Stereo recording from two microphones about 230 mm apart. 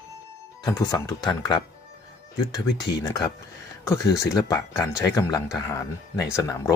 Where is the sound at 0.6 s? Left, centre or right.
Centre.